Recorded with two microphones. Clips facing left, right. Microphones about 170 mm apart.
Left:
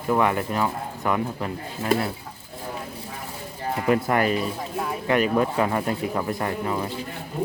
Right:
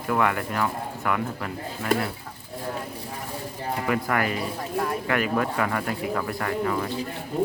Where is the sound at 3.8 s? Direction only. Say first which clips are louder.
Left 5 dB; 25° left (ahead or behind).